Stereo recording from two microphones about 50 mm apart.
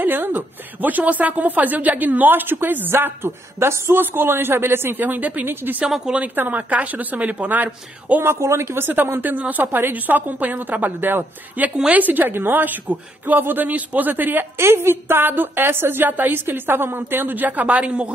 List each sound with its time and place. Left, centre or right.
0.0 s speech: right
4.0 s a woman's voice: right
5.0 s speech: right
8.4 s speech: right
8.8 s speech: right
14.6 s a woman's voice: right